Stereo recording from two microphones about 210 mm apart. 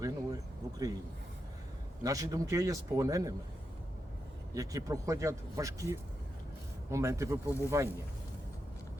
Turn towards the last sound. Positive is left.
turn(degrees=-15)  # may be behind; listen again after turning